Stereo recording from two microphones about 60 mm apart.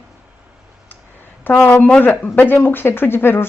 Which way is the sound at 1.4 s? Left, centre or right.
Left.